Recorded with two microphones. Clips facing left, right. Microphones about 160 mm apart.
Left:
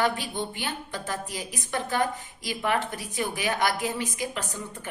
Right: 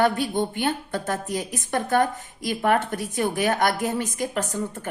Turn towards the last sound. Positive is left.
turn(degrees=-45)  # may be behind; listen again after turning